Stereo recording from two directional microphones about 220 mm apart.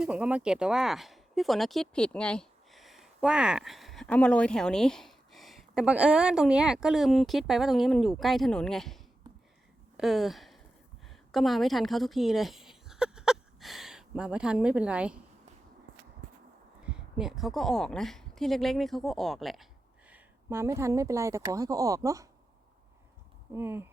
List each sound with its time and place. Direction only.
0.0 s speech: 5° right (ahead or behind)
10.0 s speech: centre (ahead or behind)
11.1 s a sound: centre (ahead or behind)
16.9 s a woman's voice: centre (ahead or behind)
23.5 s speech: 10° right (ahead or behind)